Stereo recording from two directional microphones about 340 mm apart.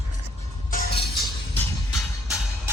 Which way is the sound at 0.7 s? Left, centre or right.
Left.